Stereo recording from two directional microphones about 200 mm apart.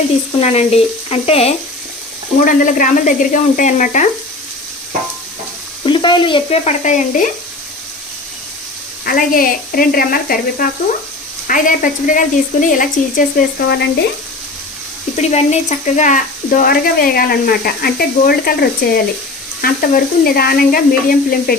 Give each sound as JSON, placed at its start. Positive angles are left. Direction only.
{"t": 0.3, "sound": "speech", "side_deg": 30}
{"t": 2.4, "sound": "speech", "side_deg": 40}
{"t": 5.8, "sound": "stir", "side_deg": 25}
{"t": 9.0, "sound": "speech", "side_deg": 45}
{"t": 15.1, "sound": "speech", "side_deg": 35}